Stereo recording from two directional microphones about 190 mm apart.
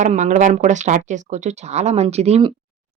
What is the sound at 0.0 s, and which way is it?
Speech, 40° right (ahead or behind).